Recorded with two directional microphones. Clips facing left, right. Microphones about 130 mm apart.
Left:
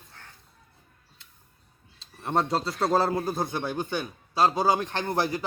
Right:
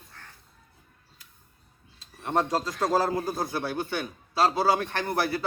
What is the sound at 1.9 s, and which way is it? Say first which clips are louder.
A man's voice: even; 25° left (ahead or behind).